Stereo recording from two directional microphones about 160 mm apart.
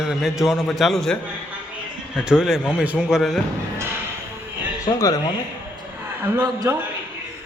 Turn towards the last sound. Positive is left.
turn(degrees=-20)  # may be behind; listen again after turning